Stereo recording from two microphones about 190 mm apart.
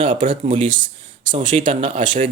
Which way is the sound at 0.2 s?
45° right (ahead or behind).